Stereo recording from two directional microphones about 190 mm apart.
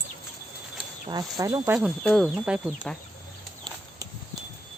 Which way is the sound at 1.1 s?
20° right (ahead or behind).